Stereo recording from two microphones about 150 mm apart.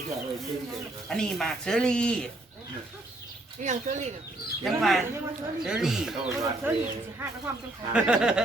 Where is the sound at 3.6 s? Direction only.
50° right (ahead or behind).